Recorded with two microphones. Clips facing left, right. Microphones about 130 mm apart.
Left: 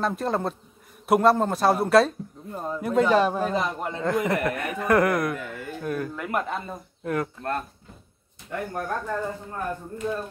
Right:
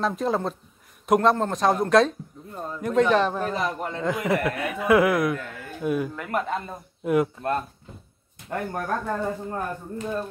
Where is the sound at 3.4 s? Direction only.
20° left (ahead or behind).